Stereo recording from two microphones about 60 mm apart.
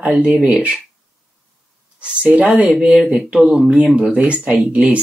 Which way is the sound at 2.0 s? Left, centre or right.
Centre.